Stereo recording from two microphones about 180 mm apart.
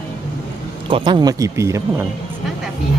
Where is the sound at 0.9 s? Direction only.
25° right (ahead or behind).